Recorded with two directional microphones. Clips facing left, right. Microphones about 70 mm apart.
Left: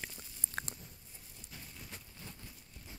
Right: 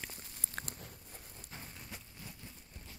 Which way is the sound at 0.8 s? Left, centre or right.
Right.